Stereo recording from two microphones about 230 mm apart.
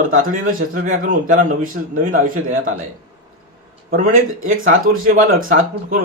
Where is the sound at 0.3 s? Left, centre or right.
Right.